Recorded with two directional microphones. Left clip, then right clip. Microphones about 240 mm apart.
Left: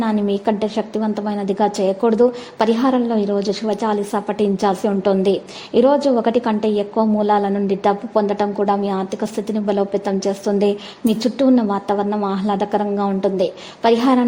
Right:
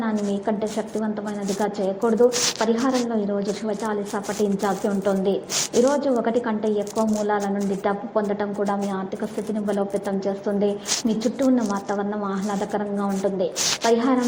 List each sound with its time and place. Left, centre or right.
0.0 s a woman's voice: left